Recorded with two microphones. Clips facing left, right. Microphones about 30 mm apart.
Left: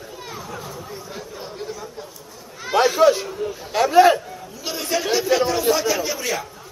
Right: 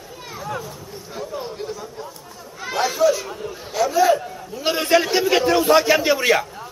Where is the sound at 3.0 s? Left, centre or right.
Left.